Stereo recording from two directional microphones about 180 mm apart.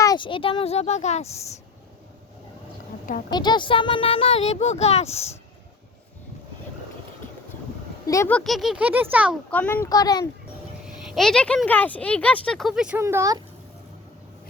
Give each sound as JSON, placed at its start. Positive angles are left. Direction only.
{"t": 0.0, "sound": "speech", "side_deg": 25}
{"t": 3.2, "sound": "speech", "side_deg": 25}
{"t": 8.0, "sound": "speech", "side_deg": 15}
{"t": 8.3, "sound": "speech", "side_deg": 5}
{"t": 9.5, "sound": "speech", "side_deg": 10}
{"t": 11.0, "sound": "speech", "side_deg": 0}
{"t": 13.0, "sound": "speech", "side_deg": -15}